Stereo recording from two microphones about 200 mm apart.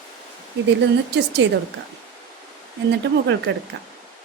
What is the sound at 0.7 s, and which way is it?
Speech, 60° right (ahead or behind).